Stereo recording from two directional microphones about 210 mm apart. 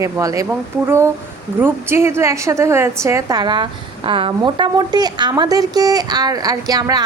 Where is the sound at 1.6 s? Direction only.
10° right (ahead or behind).